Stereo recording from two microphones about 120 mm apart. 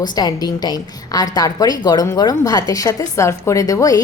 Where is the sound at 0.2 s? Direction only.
35° left (ahead or behind).